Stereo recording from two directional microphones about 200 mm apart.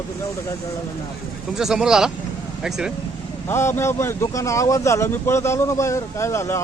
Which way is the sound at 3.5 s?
15° left (ahead or behind).